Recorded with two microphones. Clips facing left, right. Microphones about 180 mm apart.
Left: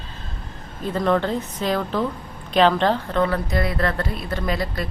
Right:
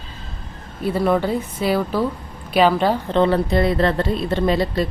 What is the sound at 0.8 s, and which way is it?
A woman's voice, 10° right (ahead or behind).